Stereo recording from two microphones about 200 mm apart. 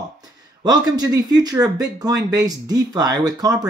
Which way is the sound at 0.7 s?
20° right (ahead or behind).